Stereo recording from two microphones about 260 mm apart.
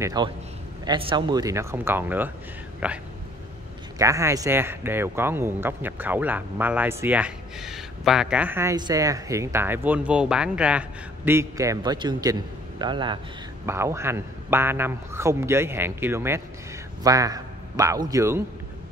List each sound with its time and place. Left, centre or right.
0.0 s speech: centre
4.0 s a man's voice: centre